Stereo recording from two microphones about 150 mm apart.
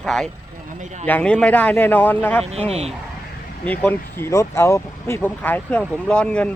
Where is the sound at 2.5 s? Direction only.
45° right (ahead or behind).